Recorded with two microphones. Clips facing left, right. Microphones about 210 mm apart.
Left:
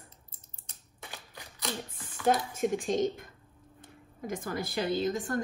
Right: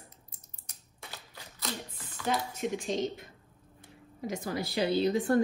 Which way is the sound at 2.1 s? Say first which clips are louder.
Left 5 dB; 50° left (ahead or behind).